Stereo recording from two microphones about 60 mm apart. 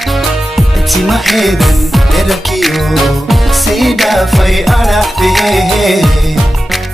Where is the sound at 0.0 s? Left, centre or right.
Centre.